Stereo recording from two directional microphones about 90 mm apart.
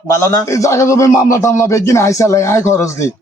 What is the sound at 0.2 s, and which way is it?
Speech, 35° left (ahead or behind).